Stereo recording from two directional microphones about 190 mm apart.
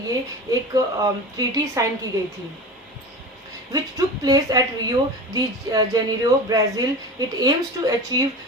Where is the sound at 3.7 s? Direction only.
20° right (ahead or behind).